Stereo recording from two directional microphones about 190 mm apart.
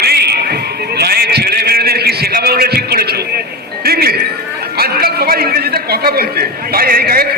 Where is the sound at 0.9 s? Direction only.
55° right (ahead or behind).